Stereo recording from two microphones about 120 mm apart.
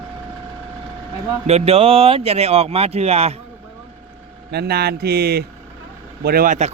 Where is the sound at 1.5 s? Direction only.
60° right (ahead or behind).